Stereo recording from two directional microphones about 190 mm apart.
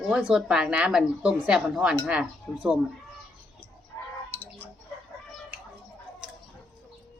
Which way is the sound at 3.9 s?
15° left (ahead or behind).